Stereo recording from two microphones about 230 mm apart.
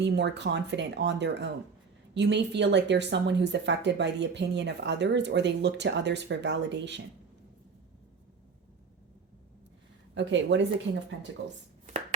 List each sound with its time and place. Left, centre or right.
0.0 s speech: right
10.2 s speech: right